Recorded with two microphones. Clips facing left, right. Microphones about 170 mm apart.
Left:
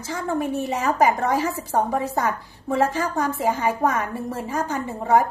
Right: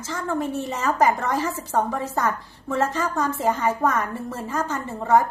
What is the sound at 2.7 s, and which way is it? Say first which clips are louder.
A woman's voice: left 2 dB; 10° left (ahead or behind).